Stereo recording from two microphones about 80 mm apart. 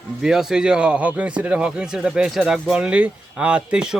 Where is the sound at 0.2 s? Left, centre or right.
Centre.